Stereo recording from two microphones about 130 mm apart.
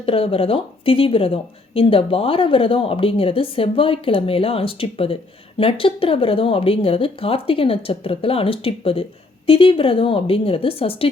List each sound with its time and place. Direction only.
0.0 s speech: 45° left (ahead or behind)